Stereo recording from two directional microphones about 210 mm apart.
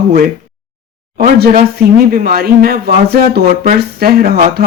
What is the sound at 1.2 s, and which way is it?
Speech, 45° right (ahead or behind).